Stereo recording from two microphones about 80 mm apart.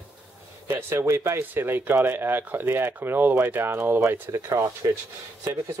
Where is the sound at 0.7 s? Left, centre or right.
Right.